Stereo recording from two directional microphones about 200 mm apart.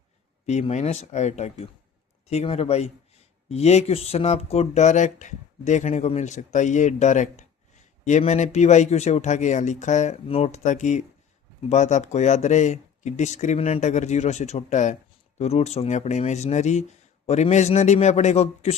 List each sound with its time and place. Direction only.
0.4 s speech: 35° left (ahead or behind)